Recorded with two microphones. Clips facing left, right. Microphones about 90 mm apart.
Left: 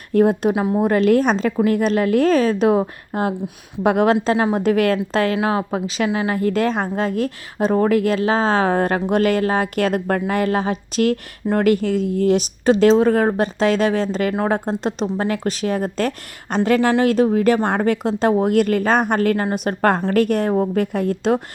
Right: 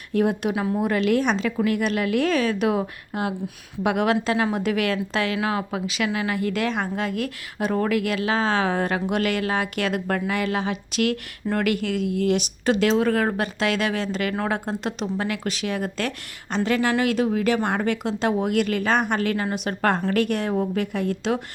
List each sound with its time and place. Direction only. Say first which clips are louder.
0.1 s speech: left 6 dB; 35° left (ahead or behind)